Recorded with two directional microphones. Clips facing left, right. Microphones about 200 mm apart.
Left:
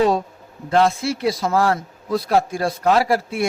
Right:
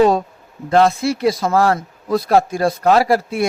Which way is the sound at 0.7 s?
40° right (ahead or behind).